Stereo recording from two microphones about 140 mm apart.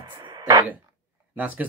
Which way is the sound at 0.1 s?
30° right (ahead or behind).